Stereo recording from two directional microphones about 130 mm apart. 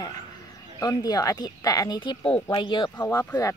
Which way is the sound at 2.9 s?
20° left (ahead or behind).